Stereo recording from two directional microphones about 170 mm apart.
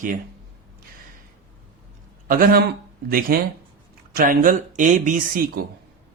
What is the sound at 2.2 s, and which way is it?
Speech, 55° right (ahead or behind).